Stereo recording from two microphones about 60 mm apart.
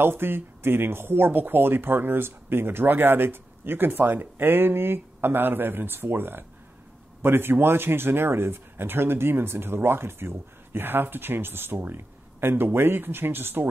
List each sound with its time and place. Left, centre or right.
0.0 s speech: right